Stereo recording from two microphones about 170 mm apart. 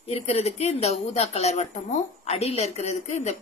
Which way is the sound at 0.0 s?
35° left (ahead or behind).